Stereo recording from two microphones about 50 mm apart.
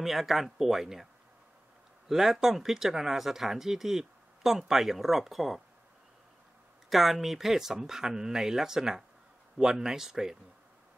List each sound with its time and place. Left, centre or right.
0.0 s speech: centre
2.0 s speech: centre
6.9 s speech: centre